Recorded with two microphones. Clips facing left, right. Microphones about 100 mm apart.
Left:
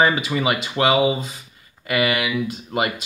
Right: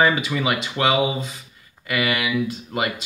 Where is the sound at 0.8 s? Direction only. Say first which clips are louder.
Left 2 dB; 35° left (ahead or behind).